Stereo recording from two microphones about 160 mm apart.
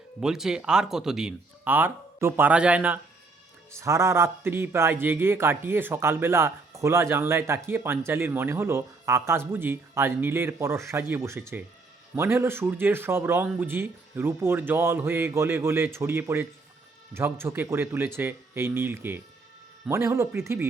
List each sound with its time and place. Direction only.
0.2 s speech: 5° right (ahead or behind)